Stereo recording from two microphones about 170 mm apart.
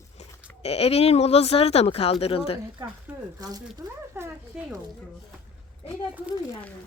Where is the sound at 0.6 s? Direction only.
35° left (ahead or behind).